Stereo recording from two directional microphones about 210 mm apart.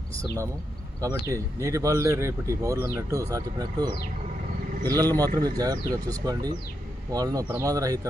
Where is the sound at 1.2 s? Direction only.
15° right (ahead or behind).